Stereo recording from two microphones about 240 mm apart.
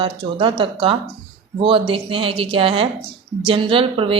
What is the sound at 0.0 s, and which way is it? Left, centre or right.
A woman's voice, right.